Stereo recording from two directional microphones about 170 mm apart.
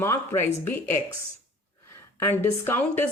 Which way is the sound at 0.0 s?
15° left (ahead or behind).